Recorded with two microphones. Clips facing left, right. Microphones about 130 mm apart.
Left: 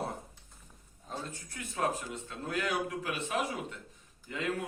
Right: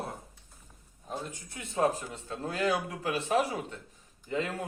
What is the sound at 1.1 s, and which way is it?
Speech, 15° right (ahead or behind).